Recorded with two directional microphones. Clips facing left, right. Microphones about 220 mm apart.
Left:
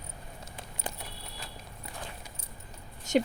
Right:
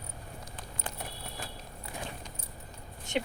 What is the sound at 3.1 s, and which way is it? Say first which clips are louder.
Speech: left 7 dB; 40° left (ahead or behind).